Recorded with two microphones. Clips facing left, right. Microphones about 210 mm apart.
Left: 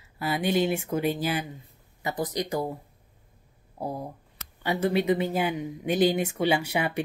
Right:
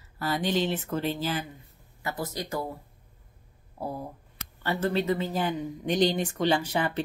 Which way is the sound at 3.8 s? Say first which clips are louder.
Left 2 dB; 15° left (ahead or behind).